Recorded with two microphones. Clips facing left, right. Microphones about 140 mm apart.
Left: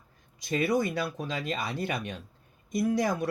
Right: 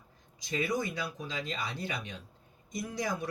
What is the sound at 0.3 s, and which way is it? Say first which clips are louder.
Speech: left 6 dB; 60° left (ahead or behind).